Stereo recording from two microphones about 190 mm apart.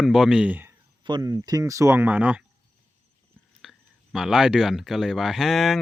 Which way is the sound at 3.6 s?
Centre (ahead or behind).